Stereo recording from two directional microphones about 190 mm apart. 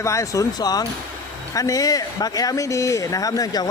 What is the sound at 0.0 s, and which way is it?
A man's voice, 15° left (ahead or behind).